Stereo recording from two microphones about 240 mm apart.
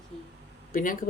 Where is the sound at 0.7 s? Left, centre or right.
Left.